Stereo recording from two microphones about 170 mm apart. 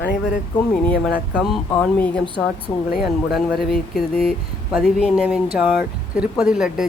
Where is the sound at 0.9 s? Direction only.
5° left (ahead or behind).